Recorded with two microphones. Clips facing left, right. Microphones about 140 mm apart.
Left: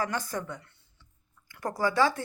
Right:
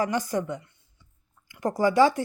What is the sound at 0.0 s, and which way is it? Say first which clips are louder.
Speech: right 6 dB; 15° right (ahead or behind).